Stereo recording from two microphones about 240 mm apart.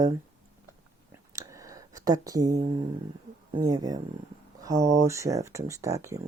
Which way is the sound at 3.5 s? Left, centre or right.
Centre.